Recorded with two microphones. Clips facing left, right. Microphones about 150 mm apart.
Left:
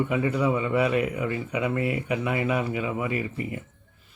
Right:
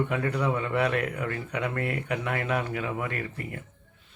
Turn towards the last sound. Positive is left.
turn(degrees=5)  # may be behind; listen again after turning